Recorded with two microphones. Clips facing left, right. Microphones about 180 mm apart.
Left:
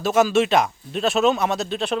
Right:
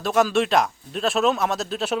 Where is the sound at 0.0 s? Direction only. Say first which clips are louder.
Left 2 dB; centre (ahead or behind).